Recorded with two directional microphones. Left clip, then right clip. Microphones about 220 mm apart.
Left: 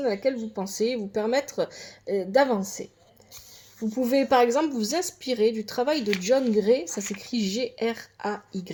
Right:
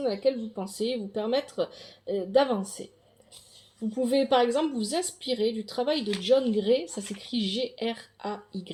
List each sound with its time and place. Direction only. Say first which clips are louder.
0.0 s a woman's voice: left 1 dB; 35° left (ahead or behind)
3.8 s a woman's voice: left 2 dB; 30° left (ahead or behind)